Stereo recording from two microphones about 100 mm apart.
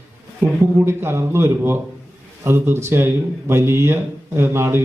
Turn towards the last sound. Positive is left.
turn(degrees=-25)  # may be behind; listen again after turning